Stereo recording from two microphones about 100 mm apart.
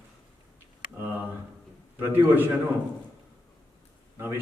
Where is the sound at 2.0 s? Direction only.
20° right (ahead or behind).